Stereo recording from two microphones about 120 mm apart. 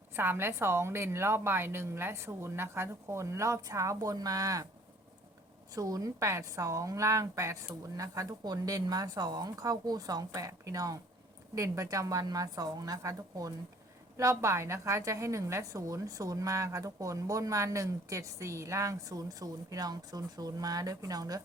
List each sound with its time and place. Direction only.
0.1 s a woman's voice: 20° right (ahead or behind)
5.7 s a woman's voice: 30° right (ahead or behind)